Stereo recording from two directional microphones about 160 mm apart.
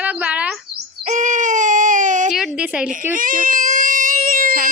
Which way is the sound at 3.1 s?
60° right (ahead or behind).